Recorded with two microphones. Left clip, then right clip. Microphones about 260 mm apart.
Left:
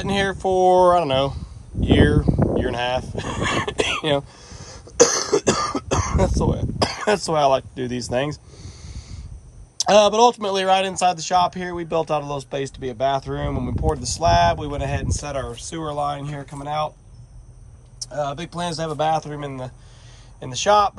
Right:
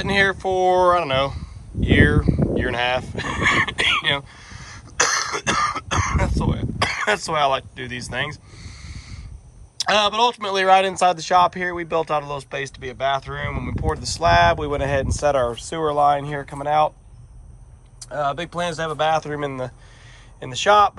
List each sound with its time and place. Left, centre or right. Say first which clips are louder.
0.0 s speech: right 3 dB; centre
18.0 s speech: right 3 dB; centre